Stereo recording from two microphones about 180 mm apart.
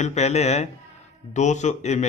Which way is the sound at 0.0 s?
40° left (ahead or behind).